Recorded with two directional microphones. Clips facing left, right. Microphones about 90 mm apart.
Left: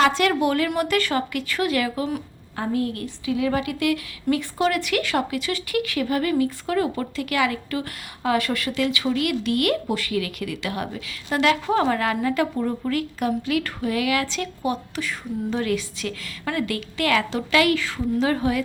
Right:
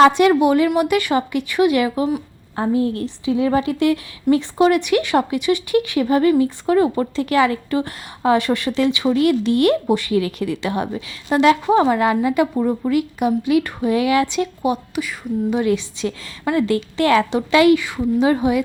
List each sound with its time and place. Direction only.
0.1 s a woman's voice: 20° right (ahead or behind)